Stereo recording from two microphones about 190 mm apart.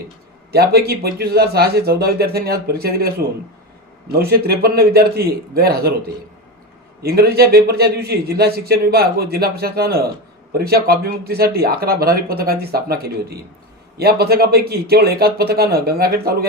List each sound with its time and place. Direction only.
0.5 s a man's voice: 55° right (ahead or behind)
4.1 s a man's voice: 55° right (ahead or behind)
7.0 s a man's voice: 55° right (ahead or behind)